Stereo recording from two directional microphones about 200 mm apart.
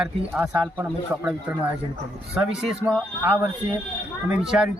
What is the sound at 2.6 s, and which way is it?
Speech, 5° right (ahead or behind).